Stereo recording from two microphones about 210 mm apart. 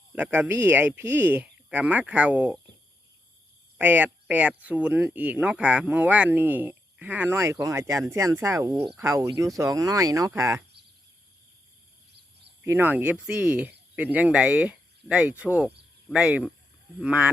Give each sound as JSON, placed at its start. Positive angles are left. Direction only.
{"t": 0.2, "sound": "speech", "side_deg": -5}
{"t": 3.8, "sound": "speech", "side_deg": -5}
{"t": 12.6, "sound": "speech", "side_deg": -10}